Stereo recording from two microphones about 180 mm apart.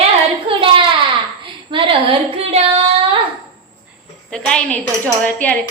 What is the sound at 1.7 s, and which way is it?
Child singing, 30° right (ahead or behind).